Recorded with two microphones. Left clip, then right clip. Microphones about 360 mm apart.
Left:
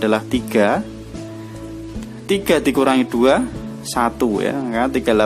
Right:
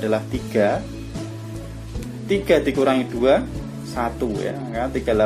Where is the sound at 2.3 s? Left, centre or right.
Left.